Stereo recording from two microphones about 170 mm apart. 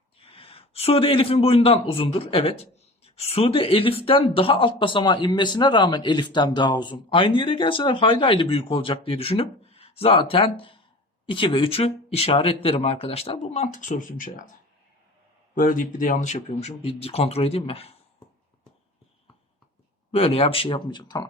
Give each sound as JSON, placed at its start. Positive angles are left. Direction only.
{"t": 0.2, "sound": "speech", "side_deg": 30}
{"t": 15.5, "sound": "speech", "side_deg": 55}
{"t": 20.1, "sound": "speech", "side_deg": 35}